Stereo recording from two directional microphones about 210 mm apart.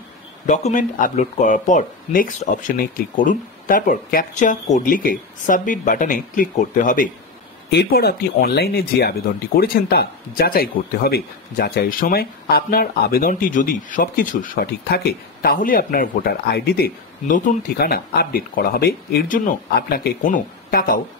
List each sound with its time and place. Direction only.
0.5 s speech: 35° left (ahead or behind)
7.7 s speech: 50° left (ahead or behind)